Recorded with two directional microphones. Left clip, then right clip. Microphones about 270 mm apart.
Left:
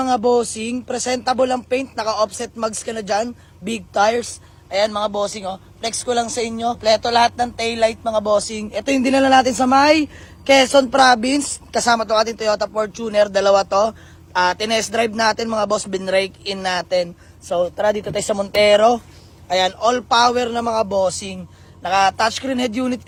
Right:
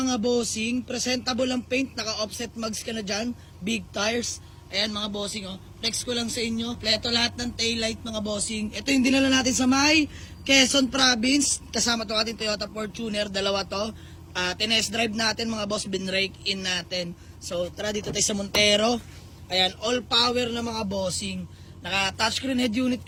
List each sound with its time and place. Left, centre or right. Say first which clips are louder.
0.0 s speech: left 9 dB; centre
16.9 s a man's voice: left 12 dB; centre
17.6 s speech: left 11 dB; centre